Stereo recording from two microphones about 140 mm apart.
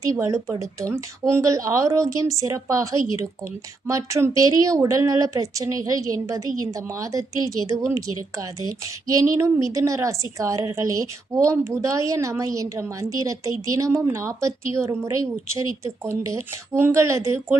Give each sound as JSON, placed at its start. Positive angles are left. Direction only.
{"t": 0.0, "sound": "a woman's voice", "side_deg": -25}